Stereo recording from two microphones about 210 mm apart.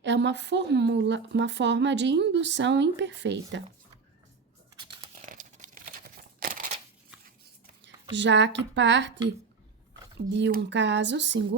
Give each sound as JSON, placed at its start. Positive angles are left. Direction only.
{"t": 0.0, "sound": "speech", "side_deg": -55}
{"t": 5.1, "sound": "crumpling", "side_deg": -40}
{"t": 8.1, "sound": "speech", "side_deg": -60}
{"t": 10.2, "sound": "speech", "side_deg": -55}